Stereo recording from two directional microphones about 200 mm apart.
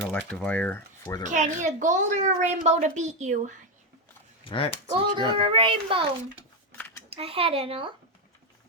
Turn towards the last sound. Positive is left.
turn(degrees=-30)  # may be behind; listen again after turning